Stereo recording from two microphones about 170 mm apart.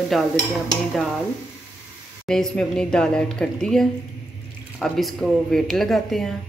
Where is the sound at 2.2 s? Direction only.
5° left (ahead or behind).